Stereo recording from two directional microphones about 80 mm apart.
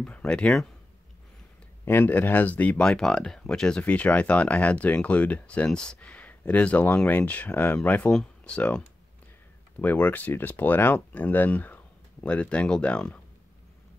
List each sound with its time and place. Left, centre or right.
0.0 s speech: centre
1.9 s speech: left
2.9 s speech: centre
8.1 s speech: centre